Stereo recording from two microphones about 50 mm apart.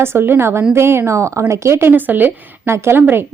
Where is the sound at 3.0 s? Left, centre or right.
Right.